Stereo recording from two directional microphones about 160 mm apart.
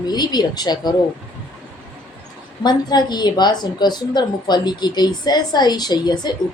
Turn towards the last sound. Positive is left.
turn(degrees=25)  # may be behind; listen again after turning